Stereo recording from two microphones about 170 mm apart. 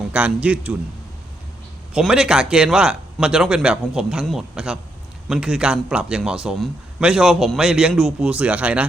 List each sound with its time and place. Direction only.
0.1 s speech: 10° right (ahead or behind)
1.9 s a man's voice: 5° right (ahead or behind)